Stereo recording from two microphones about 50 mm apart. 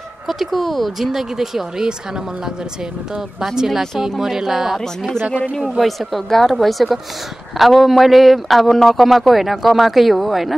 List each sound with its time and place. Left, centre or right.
0.3 s speech: centre
3.3 s speech: centre
5.3 s speech: left
5.6 s speech: centre